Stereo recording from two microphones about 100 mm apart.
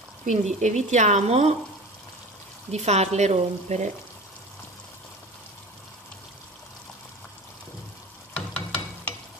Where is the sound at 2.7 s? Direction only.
90° right.